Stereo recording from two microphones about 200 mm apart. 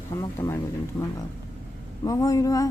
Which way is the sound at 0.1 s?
15° left (ahead or behind).